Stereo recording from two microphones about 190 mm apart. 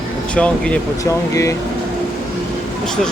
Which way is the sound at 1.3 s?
15° left (ahead or behind).